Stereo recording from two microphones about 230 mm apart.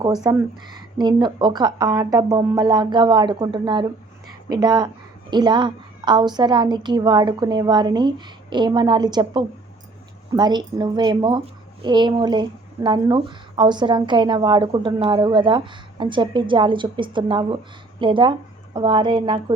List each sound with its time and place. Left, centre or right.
0.0 s a woman's voice: centre